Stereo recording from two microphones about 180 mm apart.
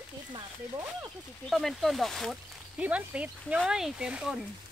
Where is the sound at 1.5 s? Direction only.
Centre (ahead or behind).